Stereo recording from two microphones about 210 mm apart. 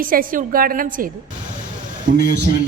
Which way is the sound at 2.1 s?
55° right (ahead or behind).